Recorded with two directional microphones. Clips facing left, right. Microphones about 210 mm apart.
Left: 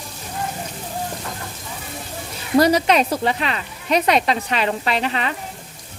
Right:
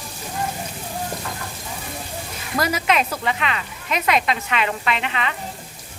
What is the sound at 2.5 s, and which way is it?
Speech, 30° left (ahead or behind).